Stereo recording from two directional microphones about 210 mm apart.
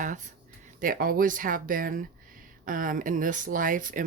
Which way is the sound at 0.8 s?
40° right (ahead or behind).